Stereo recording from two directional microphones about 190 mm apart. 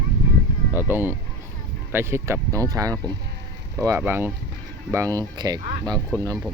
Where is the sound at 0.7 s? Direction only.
10° right (ahead or behind).